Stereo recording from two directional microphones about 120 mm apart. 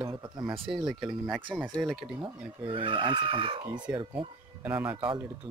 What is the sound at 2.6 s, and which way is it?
Speech, 45° right (ahead or behind).